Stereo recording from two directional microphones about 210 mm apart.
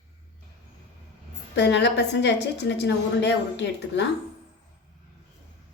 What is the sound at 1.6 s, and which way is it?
A woman's voice, 55° left (ahead or behind).